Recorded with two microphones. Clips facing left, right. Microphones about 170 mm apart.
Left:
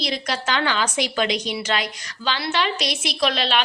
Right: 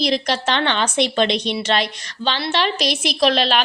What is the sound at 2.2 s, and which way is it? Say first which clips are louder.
Speech: right 3 dB; 30° right (ahead or behind).